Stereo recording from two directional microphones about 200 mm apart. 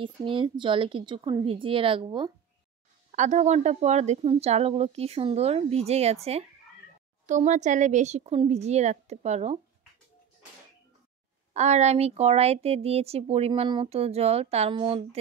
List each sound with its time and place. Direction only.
0.0 s a woman's voice: 25° right (ahead or behind)
3.1 s speech: 35° right (ahead or behind)
11.5 s speech: 35° right (ahead or behind)